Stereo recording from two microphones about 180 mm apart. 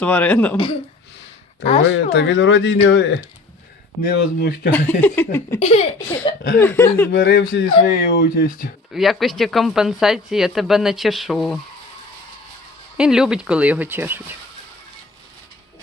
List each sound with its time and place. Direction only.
0.0 s speech: 10° left (ahead or behind)
0.5 s speech: 30° left (ahead or behind)
2.0 s speech: 75° left (ahead or behind)
4.0 s speech: 65° left (ahead or behind)
4.7 s speech: 10° left (ahead or behind)
5.5 s speech: 35° left (ahead or behind)
6.6 s speech: 15° left (ahead or behind)
7.1 s speech: 65° left (ahead or behind)
8.9 s speech: centre (ahead or behind)
13.0 s speech: 5° right (ahead or behind)